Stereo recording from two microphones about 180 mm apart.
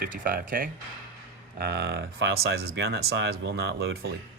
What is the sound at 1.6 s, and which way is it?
Speech, 65° right (ahead or behind).